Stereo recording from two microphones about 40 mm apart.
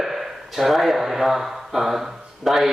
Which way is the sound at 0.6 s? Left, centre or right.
Centre.